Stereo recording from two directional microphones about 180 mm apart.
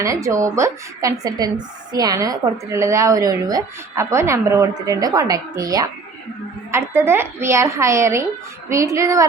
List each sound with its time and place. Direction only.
0.0 s a woman's voice: 15° right (ahead or behind)